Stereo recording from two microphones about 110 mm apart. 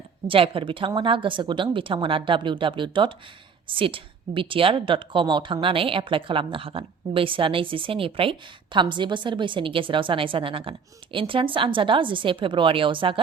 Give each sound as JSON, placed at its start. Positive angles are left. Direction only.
{"t": 0.3, "sound": "a woman's voice", "side_deg": -55}